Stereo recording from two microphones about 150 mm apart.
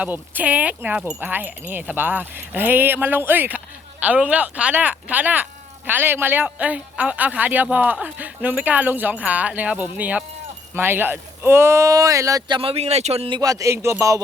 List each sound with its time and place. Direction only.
0.0 s speech: 10° right (ahead or behind)
12.5 s speech: 40° right (ahead or behind)
13.4 s speech: 25° right (ahead or behind)